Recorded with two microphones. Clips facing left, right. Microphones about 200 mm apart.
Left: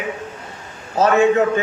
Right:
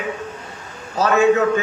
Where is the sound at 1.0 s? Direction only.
30° left (ahead or behind).